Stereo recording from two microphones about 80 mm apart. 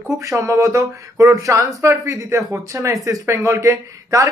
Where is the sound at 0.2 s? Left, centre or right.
Right.